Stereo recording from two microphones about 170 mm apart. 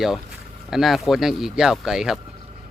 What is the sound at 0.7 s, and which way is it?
Speech, centre (ahead or behind).